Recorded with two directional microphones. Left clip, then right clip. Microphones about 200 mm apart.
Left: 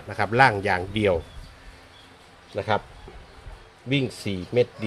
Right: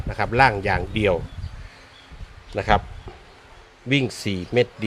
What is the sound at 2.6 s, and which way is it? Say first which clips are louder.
Speech: right 5 dB; 25° right (ahead or behind).